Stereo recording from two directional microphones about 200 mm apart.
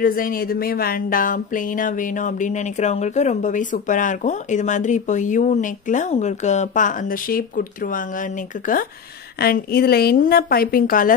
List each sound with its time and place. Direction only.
0.0 s a woman's voice: 45° left (ahead or behind)